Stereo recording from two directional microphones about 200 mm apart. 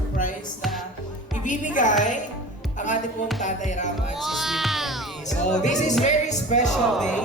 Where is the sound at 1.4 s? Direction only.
40° left (ahead or behind).